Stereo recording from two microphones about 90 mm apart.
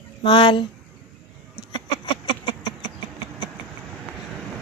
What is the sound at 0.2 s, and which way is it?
Speech, 60° left (ahead or behind).